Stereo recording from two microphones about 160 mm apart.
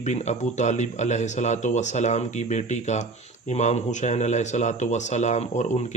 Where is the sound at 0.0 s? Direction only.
45° left (ahead or behind).